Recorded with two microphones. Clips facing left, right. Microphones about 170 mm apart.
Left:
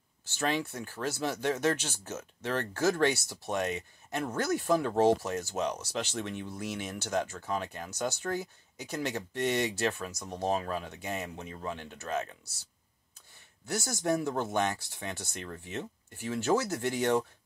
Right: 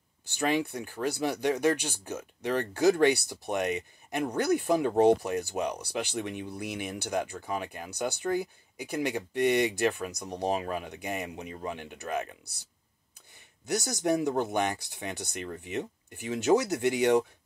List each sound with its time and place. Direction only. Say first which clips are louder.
0.2 s speech: right 3 dB; 15° right (ahead or behind)